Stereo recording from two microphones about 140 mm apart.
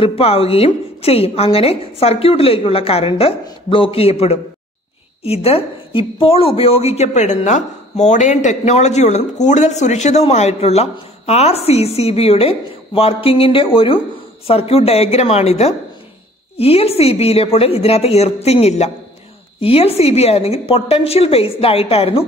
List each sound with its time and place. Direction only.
0.0 s a woman's voice: 45° left (ahead or behind)